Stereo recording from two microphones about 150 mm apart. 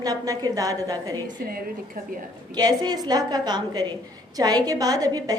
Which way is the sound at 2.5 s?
25° right (ahead or behind).